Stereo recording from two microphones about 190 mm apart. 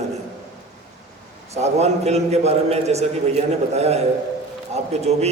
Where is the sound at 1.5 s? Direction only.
35° right (ahead or behind).